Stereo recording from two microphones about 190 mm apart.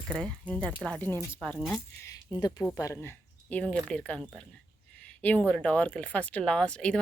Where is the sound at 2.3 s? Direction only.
20° left (ahead or behind); by 6.9 s 5° left (ahead or behind).